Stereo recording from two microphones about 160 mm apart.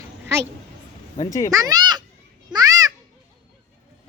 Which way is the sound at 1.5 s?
20° right (ahead or behind).